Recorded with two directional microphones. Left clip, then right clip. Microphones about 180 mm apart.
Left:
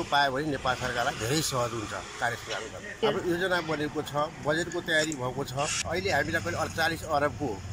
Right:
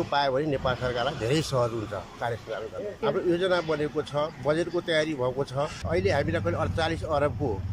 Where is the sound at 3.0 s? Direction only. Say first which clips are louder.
Right 2 dB; 5° right (ahead or behind).